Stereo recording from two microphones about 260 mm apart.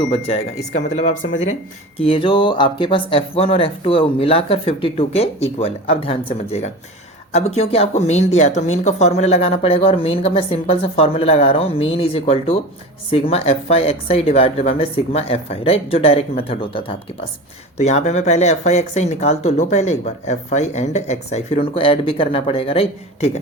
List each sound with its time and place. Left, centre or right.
0.1 s speech: left